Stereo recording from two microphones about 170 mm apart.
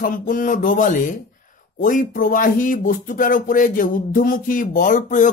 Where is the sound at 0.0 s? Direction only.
50° left (ahead or behind).